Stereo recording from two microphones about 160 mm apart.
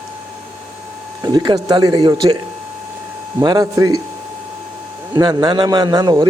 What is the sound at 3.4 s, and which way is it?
Speech, 25° right (ahead or behind).